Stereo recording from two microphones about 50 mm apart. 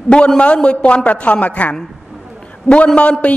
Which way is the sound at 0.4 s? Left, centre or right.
Left.